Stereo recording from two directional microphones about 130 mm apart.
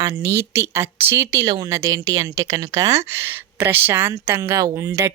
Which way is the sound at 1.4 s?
30° right (ahead or behind).